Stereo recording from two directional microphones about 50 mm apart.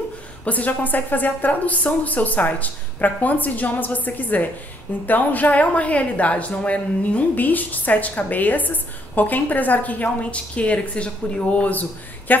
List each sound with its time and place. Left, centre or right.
0.5 s speech: left